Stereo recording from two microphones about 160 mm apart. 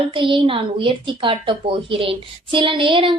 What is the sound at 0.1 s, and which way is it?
A woman's voice, 30° right (ahead or behind).